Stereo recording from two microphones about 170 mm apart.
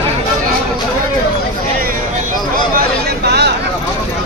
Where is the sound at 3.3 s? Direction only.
75° right (ahead or behind).